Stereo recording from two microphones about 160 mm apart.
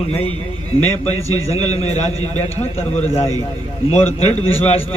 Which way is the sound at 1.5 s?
40° left (ahead or behind).